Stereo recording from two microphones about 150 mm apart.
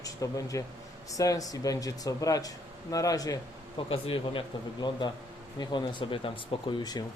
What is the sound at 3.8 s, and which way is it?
A man's voice, 35° left (ahead or behind).